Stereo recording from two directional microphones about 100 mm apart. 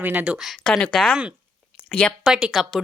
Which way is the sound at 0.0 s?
15° right (ahead or behind).